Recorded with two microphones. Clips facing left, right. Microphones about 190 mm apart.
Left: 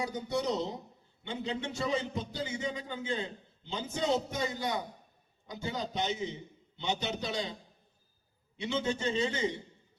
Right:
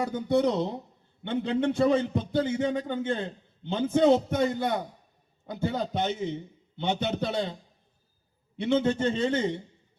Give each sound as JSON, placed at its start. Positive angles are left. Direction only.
{"t": 0.0, "sound": "a man's voice", "side_deg": -55}
{"t": 8.5, "sound": "a man's voice", "side_deg": -55}